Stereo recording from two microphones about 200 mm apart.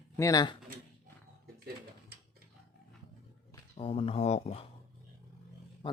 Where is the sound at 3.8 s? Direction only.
30° left (ahead or behind).